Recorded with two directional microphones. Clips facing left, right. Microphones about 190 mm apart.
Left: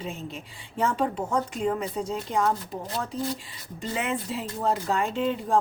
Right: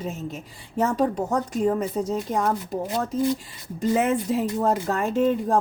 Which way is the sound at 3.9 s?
45° right (ahead or behind).